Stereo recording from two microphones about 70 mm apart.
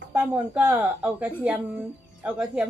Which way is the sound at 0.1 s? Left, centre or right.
Right.